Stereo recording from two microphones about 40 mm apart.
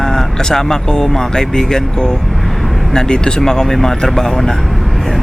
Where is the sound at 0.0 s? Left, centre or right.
Centre.